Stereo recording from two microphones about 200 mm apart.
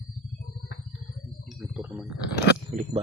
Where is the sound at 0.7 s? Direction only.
65° left (ahead or behind).